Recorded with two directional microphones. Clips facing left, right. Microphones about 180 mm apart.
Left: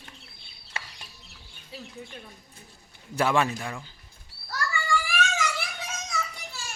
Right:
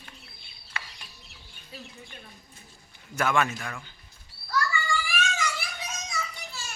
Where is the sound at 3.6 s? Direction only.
20° left (ahead or behind).